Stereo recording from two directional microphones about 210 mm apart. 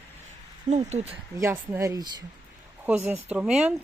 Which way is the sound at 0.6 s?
30° right (ahead or behind).